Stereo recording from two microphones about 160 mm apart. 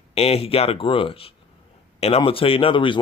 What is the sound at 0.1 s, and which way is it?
Speech, 40° left (ahead or behind).